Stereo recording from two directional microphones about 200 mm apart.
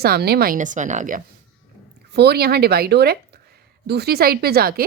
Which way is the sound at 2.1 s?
55° right (ahead or behind).